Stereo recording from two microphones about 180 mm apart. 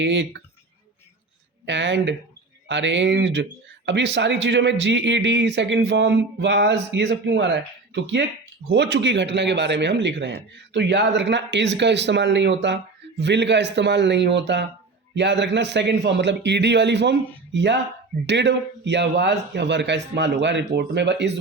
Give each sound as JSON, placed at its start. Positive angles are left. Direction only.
{"t": 0.0, "sound": "speech", "side_deg": -80}
{"t": 1.6, "sound": "speech", "side_deg": -90}